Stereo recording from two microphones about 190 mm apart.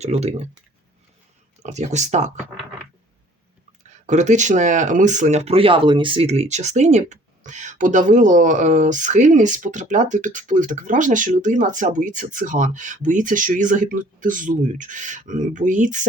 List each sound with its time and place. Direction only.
0.0 s speech: 35° right (ahead or behind)
1.6 s speech: 35° right (ahead or behind)
4.0 s speech: 40° right (ahead or behind)